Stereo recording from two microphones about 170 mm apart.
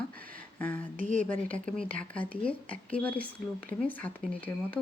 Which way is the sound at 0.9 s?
50° right (ahead or behind).